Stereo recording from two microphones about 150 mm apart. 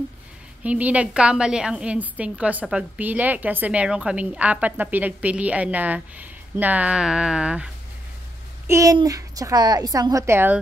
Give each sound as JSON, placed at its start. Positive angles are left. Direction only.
{"t": 0.7, "sound": "a woman's voice", "side_deg": -10}
{"t": 8.6, "sound": "a child's voice", "side_deg": -20}